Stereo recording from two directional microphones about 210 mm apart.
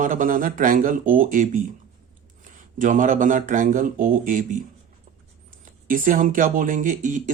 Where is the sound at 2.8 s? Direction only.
40° right (ahead or behind).